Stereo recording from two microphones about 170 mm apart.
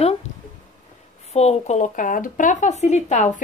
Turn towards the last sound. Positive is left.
turn(degrees=45)  # may be behind; listen again after turning